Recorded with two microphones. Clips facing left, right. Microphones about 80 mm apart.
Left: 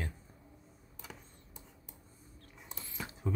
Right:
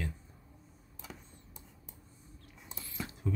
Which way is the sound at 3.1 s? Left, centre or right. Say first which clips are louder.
Even; left.